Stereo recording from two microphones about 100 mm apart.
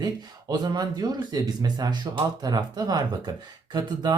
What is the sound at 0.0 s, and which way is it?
Speech, 45° right (ahead or behind).